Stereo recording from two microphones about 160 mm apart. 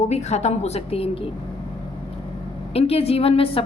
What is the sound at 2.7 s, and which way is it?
Speech, 40° left (ahead or behind).